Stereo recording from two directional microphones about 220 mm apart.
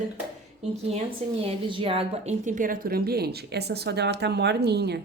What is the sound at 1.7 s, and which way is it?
Speech, 25° right (ahead or behind).